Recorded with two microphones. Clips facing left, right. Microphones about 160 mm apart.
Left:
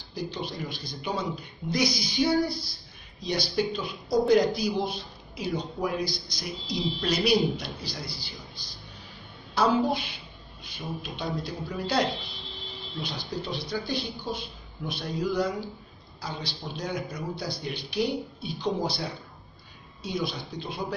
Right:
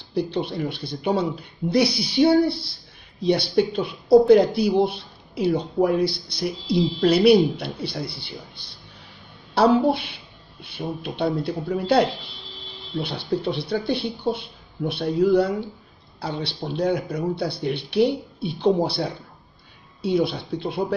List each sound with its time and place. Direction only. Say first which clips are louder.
0.1 s a man's voice: right 9 dB; 65° right (ahead or behind)
2.1 s a sound: right 8 dB; 30° right (ahead or behind)
3.2 s a man's voice: right 8 dB; 60° right (ahead or behind)
20.2 s a man's voice: right 7 dB; 60° right (ahead or behind)